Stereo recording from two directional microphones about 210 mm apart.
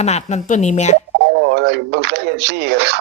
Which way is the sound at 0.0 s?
30° left (ahead or behind).